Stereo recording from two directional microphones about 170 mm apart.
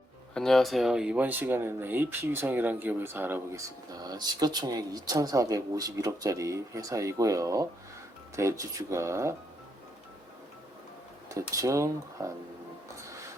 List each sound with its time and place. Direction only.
0.3 s speech: centre (ahead or behind)
3.9 s speech: 25° right (ahead or behind)
11.3 s speech: 20° right (ahead or behind)